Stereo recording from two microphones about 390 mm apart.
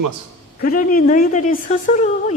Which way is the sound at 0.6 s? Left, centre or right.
Left.